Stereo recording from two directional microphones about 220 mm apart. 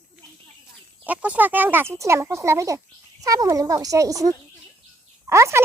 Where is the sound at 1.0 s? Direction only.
5° right (ahead or behind).